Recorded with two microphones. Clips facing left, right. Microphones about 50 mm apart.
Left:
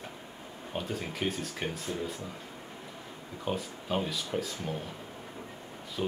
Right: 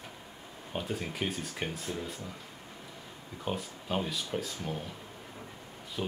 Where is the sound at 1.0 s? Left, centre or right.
Centre.